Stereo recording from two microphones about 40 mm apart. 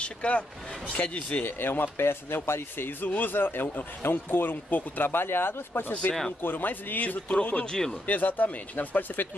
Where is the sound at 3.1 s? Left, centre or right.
Left.